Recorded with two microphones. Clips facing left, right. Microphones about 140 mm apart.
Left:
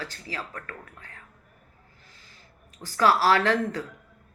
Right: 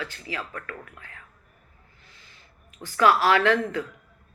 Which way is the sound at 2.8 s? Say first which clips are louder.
Right 1 dB; 35° left (ahead or behind).